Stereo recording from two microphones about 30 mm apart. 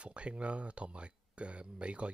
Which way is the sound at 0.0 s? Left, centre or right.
Right.